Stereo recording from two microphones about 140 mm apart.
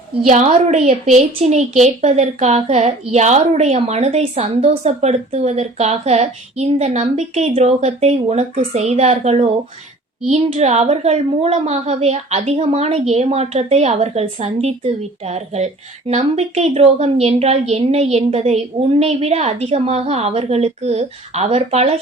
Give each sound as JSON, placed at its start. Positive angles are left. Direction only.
{"t": 0.3, "sound": "a woman's voice", "side_deg": -55}